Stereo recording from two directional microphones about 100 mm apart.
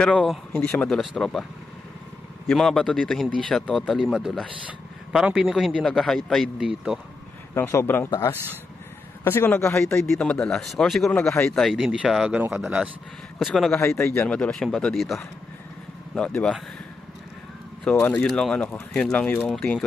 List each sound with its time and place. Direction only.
0.0 s a man's voice: 10° left (ahead or behind)
2.4 s a man's voice: 5° left (ahead or behind)
4.0 s a man's voice: 5° right (ahead or behind)
5.8 s a man's voice: 5° left (ahead or behind)
7.5 s a man's voice: 25° left (ahead or behind)
10.0 s a man's voice: 5° left (ahead or behind)
11.7 s a man's voice: 10° right (ahead or behind)
13.7 s a man's voice: 25° left (ahead or behind)
14.2 s speech: 10° left (ahead or behind)
18.1 s speech: 5° left (ahead or behind)
19.4 s a man's voice: centre (ahead or behind)